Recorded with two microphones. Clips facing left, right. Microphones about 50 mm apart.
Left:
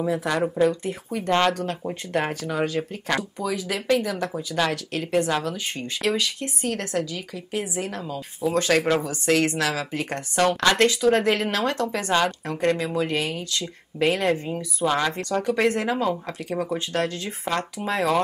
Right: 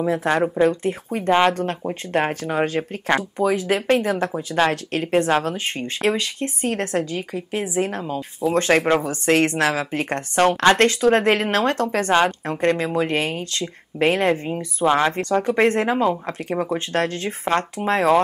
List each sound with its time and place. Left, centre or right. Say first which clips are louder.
0.3 s speech: right 3 dB; right
10.8 s speech: right 3 dB; right